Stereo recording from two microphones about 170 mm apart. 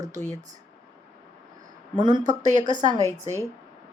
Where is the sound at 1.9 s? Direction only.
25° right (ahead or behind).